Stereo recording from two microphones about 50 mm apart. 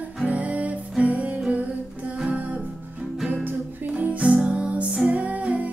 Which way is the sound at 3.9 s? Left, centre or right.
Right.